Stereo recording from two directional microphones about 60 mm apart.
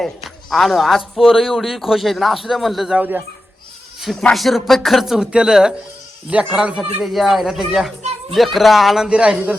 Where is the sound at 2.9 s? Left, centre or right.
Right.